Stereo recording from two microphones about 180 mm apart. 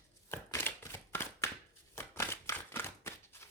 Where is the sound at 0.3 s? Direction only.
15° left (ahead or behind).